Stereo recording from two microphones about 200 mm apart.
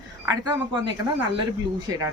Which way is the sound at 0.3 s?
20° right (ahead or behind).